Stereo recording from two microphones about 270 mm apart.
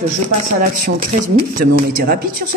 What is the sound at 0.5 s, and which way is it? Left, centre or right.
Speech, right.